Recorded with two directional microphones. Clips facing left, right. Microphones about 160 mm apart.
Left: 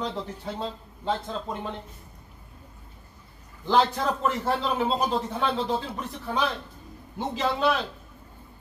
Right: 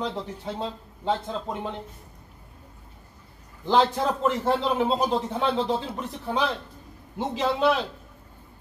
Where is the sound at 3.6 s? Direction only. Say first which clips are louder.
Right 1 dB; 20° right (ahead or behind).